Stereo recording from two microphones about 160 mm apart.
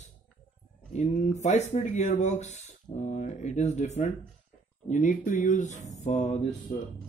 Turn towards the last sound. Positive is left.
turn(degrees=45)  # may be behind; listen again after turning